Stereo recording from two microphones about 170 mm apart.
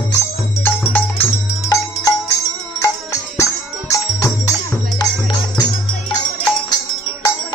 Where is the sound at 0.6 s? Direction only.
10° left (ahead or behind).